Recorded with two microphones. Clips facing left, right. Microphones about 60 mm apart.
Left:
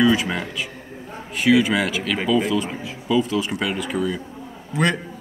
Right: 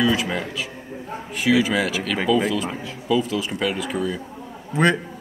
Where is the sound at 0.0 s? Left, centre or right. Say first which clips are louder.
Left 3 dB; centre.